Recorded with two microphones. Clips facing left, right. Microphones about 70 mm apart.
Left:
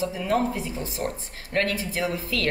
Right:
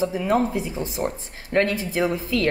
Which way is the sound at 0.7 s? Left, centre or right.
Right.